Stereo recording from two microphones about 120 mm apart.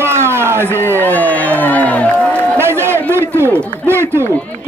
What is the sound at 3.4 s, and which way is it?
Speech, 20° right (ahead or behind).